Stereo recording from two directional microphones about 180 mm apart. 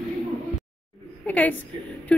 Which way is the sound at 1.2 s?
10° left (ahead or behind).